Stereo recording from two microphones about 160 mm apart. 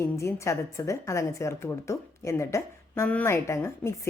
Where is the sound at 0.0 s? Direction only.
20° left (ahead or behind).